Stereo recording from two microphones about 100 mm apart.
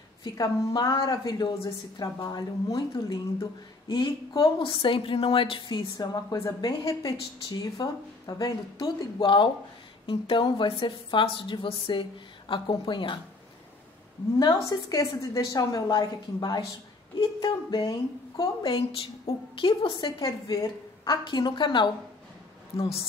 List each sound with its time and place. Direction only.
0.2 s a woman's voice: 45° left (ahead or behind)
4.6 s a woman's voice: 60° left (ahead or behind)
5.9 s a woman's voice: 35° left (ahead or behind); by 13.2 s 55° left (ahead or behind)
14.5 s a woman's voice: 35° left (ahead or behind)
18.6 s a woman's voice: 65° left (ahead or behind)
20.2 s a woman's voice: 35° left (ahead or behind)
22.8 s a woman's voice: 75° left (ahead or behind)